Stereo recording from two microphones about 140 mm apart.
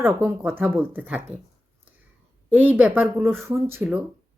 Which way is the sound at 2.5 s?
10° right (ahead or behind).